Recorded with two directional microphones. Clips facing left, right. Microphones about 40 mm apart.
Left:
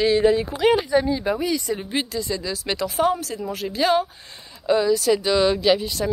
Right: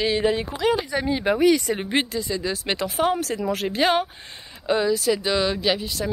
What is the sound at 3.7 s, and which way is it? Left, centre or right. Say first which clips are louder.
Speech: left 2 dB; right.